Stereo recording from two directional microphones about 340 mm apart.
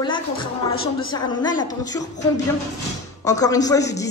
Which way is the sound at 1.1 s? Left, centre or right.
Centre.